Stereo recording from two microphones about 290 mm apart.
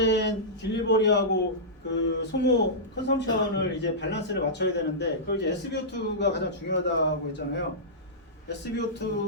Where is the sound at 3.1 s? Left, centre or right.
Left.